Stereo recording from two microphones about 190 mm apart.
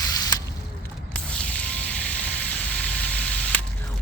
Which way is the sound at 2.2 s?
5° left (ahead or behind).